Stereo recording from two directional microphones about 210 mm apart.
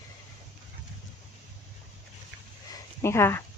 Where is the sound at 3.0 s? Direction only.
10° left (ahead or behind).